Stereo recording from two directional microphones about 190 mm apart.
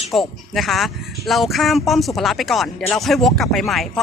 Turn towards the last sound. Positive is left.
turn(degrees=0)  # may be behind; listen again after turning